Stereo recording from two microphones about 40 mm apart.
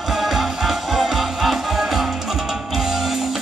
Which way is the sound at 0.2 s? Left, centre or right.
Centre.